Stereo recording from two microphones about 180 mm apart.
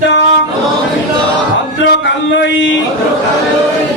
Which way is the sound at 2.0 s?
90° left.